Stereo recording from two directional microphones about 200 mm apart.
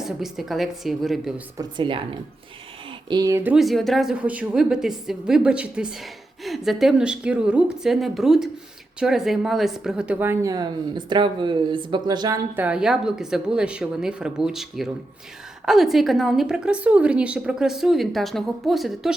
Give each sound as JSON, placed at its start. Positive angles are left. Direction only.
{"t": 0.0, "sound": "a woman's voice", "side_deg": 0}
{"t": 1.5, "sound": "a woman's voice", "side_deg": -25}
{"t": 3.1, "sound": "a woman's voice", "side_deg": -20}
{"t": 12.5, "sound": "a woman's voice", "side_deg": -5}